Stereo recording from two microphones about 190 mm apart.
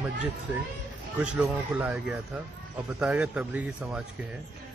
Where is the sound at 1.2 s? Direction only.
5° right (ahead or behind).